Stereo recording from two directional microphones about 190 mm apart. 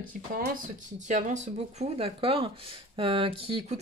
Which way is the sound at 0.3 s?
45° right (ahead or behind).